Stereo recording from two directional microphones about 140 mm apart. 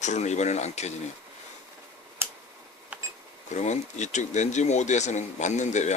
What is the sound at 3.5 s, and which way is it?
Speech, 55° left (ahead or behind).